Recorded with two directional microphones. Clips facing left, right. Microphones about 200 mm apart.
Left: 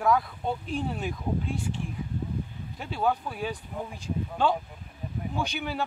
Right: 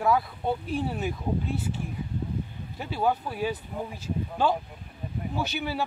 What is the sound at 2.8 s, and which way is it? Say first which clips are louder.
Speech: right 1 dB; 5° right (ahead or behind).